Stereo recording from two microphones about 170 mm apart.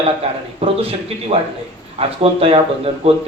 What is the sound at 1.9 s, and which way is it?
Speech, 35° right (ahead or behind).